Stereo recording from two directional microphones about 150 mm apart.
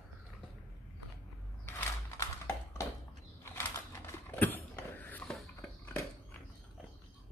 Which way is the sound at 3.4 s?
20° left (ahead or behind).